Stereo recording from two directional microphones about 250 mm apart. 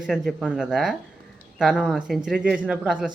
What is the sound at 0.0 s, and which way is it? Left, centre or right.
Speech, centre.